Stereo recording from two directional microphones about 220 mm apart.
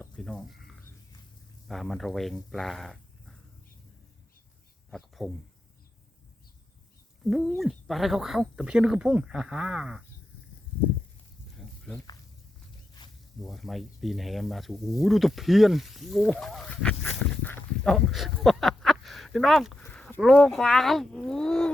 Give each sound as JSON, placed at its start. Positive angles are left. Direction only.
{"t": 0.0, "sound": "snake", "side_deg": 0}
{"t": 1.6, "sound": "speech", "side_deg": 0}
{"t": 4.9, "sound": "speech", "side_deg": 0}
{"t": 7.3, "sound": "speech", "side_deg": 0}
{"t": 13.0, "sound": "a sound", "side_deg": 15}
{"t": 13.4, "sound": "speech", "side_deg": 0}